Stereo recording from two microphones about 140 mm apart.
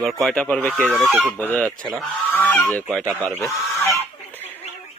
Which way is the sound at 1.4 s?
10° left (ahead or behind).